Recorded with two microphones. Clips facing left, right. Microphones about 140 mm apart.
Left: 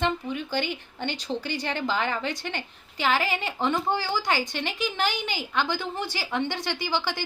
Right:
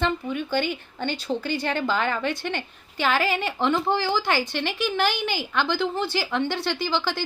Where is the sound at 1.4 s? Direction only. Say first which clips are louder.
Right 4 dB; 15° left (ahead or behind).